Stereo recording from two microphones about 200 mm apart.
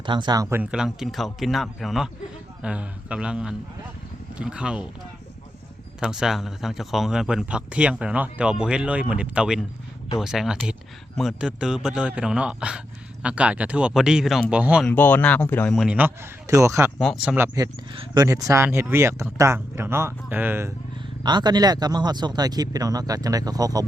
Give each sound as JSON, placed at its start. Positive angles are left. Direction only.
{"t": 0.0, "sound": "speech", "side_deg": -25}
{"t": 0.6, "sound": "speech", "side_deg": -5}
{"t": 6.0, "sound": "speech", "side_deg": -5}
{"t": 14.8, "sound": "speech", "side_deg": 10}
{"t": 17.0, "sound": "speech", "side_deg": 0}
{"t": 17.3, "sound": "speech", "side_deg": -15}